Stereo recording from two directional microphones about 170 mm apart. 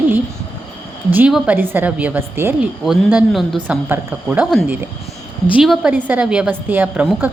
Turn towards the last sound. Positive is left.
turn(degrees=-10)  # may be behind; listen again after turning